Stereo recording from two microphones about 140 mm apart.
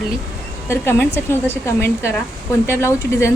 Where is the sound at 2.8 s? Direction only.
20° left (ahead or behind).